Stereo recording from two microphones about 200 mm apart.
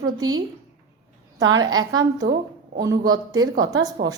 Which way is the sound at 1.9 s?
20° right (ahead or behind).